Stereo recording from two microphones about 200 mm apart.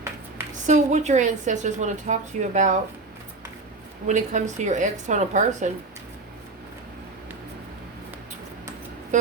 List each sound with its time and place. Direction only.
0.7 s a woman's voice: 35° right (ahead or behind)
4.0 s a woman's voice: 35° right (ahead or behind)